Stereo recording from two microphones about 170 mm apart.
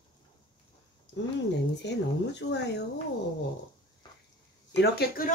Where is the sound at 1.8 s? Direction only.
90° left.